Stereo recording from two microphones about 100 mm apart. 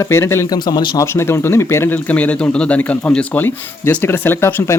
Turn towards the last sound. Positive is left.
turn(degrees=25)  # may be behind; listen again after turning